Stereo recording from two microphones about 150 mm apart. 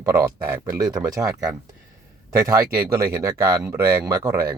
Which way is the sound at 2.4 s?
20° right (ahead or behind).